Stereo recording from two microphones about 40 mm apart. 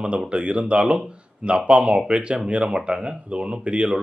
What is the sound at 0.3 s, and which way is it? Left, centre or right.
A man's voice, right.